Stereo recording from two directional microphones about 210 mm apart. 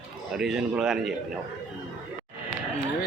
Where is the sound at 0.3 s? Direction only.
5° right (ahead or behind).